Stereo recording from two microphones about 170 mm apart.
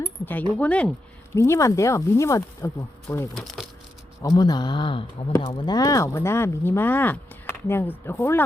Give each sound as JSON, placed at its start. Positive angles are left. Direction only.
{"t": 0.0, "sound": "a sound", "side_deg": 10}
{"t": 0.5, "sound": "speech", "side_deg": 5}
{"t": 3.3, "sound": "speech", "side_deg": 0}
{"t": 4.2, "sound": "speech", "side_deg": 20}